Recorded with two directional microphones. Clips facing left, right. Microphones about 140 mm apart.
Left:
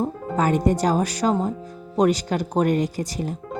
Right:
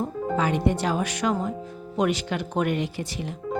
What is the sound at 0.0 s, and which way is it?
Speech, 45° left (ahead or behind).